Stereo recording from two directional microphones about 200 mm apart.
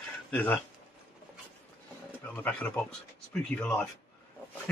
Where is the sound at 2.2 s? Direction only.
10° left (ahead or behind).